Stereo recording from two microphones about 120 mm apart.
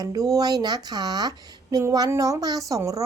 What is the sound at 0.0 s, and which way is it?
A woman's voice, 30° right (ahead or behind).